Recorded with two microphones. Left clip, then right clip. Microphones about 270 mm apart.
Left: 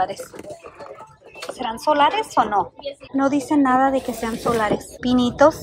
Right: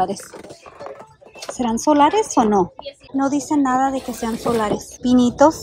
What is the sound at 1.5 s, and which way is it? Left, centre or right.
Speech, right.